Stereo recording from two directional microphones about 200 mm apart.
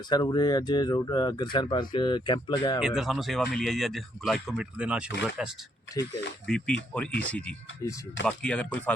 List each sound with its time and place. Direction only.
0.1 s speech: 20° left (ahead or behind)
2.8 s speech: centre (ahead or behind)